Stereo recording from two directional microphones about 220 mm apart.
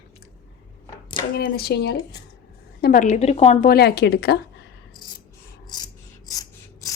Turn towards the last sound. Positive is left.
turn(degrees=15)  # may be behind; listen again after turning